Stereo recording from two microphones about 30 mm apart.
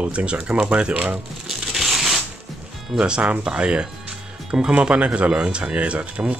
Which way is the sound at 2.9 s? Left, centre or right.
Right.